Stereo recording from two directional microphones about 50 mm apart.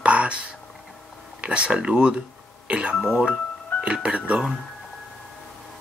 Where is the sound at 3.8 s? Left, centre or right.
Right.